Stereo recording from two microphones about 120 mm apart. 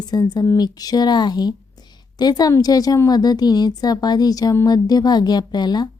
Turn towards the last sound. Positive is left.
turn(degrees=35)  # may be behind; listen again after turning